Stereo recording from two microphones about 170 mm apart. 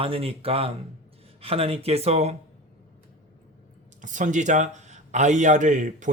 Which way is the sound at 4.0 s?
45° right (ahead or behind).